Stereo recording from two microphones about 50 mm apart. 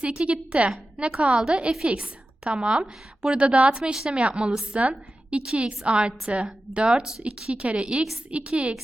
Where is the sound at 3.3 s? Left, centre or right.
Right.